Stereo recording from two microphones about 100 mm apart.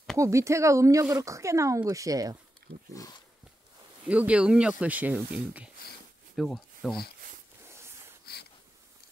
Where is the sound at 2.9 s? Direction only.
35° left (ahead or behind).